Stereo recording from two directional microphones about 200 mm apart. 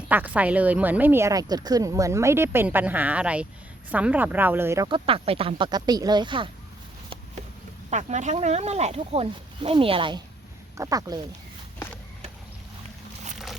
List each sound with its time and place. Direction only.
0.1 s speech: 10° right (ahead or behind)
4.9 s speech: 25° right (ahead or behind)
7.9 s speech: 35° right (ahead or behind); by 11.2 s 15° right (ahead or behind)